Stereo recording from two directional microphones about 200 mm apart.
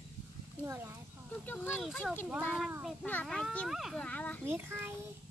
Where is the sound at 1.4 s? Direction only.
10° left (ahead or behind).